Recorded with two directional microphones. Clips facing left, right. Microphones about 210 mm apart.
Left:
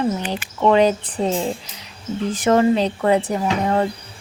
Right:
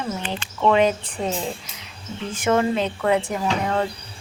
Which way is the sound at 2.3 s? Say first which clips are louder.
Left 4 dB; 35° left (ahead or behind).